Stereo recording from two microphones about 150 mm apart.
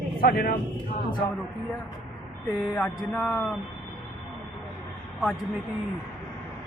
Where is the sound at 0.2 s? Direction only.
90° left.